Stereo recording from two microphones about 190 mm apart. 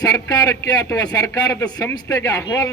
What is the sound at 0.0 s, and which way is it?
A man's voice, 20° left (ahead or behind).